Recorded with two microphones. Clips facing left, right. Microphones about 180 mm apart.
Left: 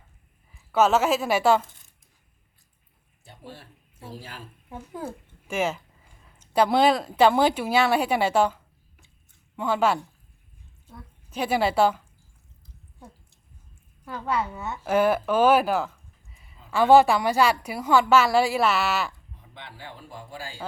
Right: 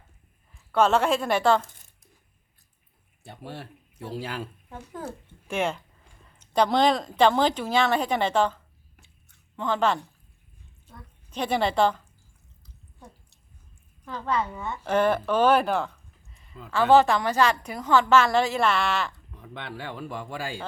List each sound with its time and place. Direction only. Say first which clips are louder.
0.7 s a woman's voice: left 1 dB; 5° left (ahead or behind)
3.2 s speech: right 5 dB; 70° right (ahead or behind)
5.5 s a woman's voice: left 1 dB; centre (ahead or behind)
14.0 s a woman's voice: even; 10° left (ahead or behind)
19.3 s speech: right 7 dB; 70° right (ahead or behind)